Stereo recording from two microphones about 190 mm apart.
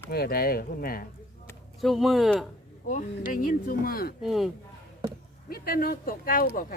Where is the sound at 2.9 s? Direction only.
45° left (ahead or behind).